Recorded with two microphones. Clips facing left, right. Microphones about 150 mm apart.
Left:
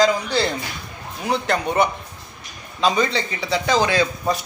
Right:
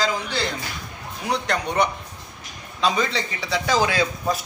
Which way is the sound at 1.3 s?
5° left (ahead or behind).